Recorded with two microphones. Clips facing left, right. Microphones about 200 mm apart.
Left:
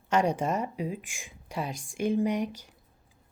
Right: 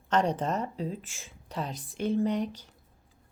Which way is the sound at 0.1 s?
10° left (ahead or behind).